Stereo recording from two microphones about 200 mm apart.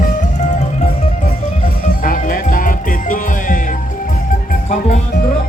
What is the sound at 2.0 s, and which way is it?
Music, 45° left (ahead or behind).